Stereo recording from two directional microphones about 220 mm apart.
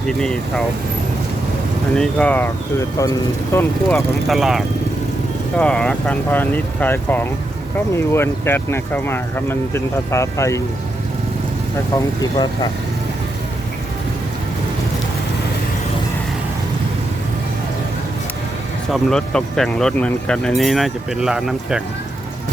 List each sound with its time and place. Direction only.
0.1 s speech: centre (ahead or behind)
2.0 s speech: 5° left (ahead or behind)
11.9 s speech: 15° left (ahead or behind)
19.1 s speech: centre (ahead or behind)